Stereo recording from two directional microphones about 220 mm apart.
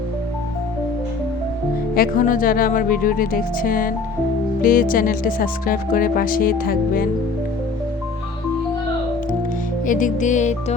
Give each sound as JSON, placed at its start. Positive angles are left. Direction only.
{"t": 2.0, "sound": "speech", "side_deg": 40}
{"t": 9.8, "sound": "speech", "side_deg": 35}